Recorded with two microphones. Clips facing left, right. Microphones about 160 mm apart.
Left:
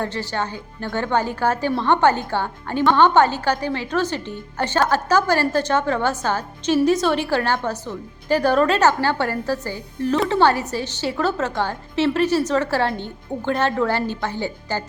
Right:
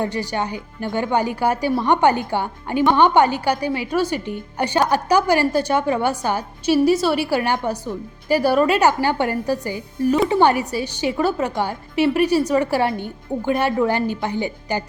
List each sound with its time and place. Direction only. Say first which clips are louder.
0.0 s a woman's voice: right 2 dB; 15° right (ahead or behind)